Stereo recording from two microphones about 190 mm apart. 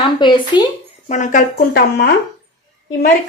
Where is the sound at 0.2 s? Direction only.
25° left (ahead or behind).